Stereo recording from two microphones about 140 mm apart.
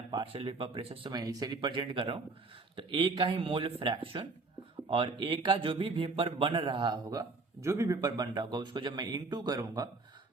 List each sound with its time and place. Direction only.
0.1 s speech: 35° right (ahead or behind)
1.1 s speech: 25° right (ahead or behind)